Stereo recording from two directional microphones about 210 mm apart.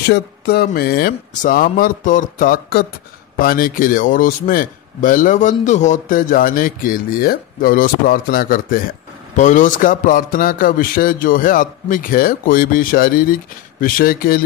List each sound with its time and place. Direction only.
0.1 s a man's voice: 50° left (ahead or behind)